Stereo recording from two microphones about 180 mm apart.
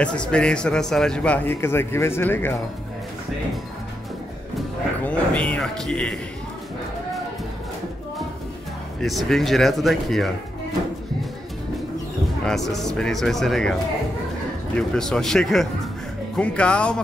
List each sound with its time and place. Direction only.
0.0 s a man's voice: 5° left (ahead or behind)
4.6 s speech: 5° left (ahead or behind)
9.0 s speech: centre (ahead or behind)
12.4 s speech: centre (ahead or behind)
14.8 s a man's voice: 5° left (ahead or behind)